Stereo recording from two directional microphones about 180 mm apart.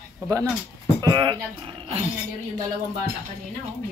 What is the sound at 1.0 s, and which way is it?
Speech, 20° right (ahead or behind).